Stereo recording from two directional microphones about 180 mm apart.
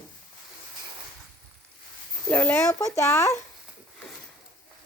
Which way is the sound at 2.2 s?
10° left (ahead or behind).